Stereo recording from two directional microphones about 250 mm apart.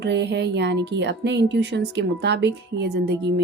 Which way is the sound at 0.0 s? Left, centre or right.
Right.